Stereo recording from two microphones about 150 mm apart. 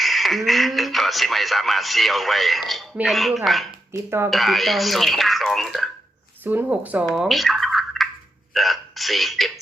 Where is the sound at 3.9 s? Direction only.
15° right (ahead or behind).